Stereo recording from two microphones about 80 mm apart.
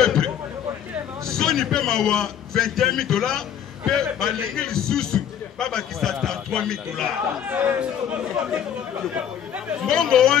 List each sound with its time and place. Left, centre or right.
0.0 s a sound: centre
1.2 s a man's voice: centre
7.4 s speech: right
9.8 s speech: centre